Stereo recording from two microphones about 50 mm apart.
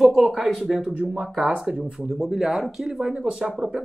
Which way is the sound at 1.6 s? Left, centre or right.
Centre.